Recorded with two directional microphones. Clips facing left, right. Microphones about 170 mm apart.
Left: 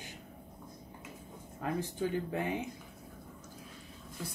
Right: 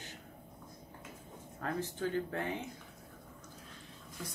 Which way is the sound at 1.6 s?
15° left (ahead or behind).